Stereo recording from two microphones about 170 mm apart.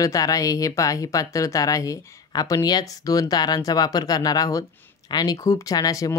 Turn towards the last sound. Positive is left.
turn(degrees=20)  # may be behind; listen again after turning